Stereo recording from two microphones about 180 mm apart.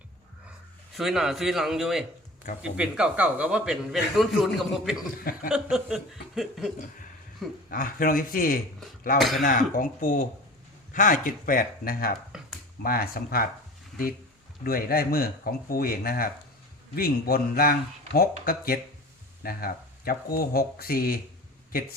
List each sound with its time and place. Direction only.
0.9 s speech: centre (ahead or behind)
7.7 s speech: 50° left (ahead or behind)
9.1 s speech: centre (ahead or behind)
9.4 s speech: 50° left (ahead or behind)
14.6 s speech: 55° left (ahead or behind)